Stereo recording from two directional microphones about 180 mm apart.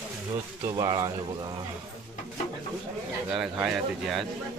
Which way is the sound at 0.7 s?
20° right (ahead or behind).